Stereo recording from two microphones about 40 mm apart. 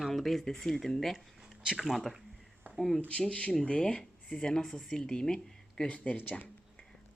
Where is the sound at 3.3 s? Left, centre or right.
Left.